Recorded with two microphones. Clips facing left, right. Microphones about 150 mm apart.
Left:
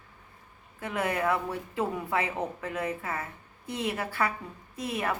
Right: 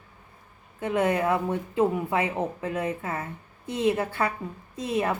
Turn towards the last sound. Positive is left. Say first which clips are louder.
# right 5 dB
turn(degrees=-25)  # may be behind; listen again after turning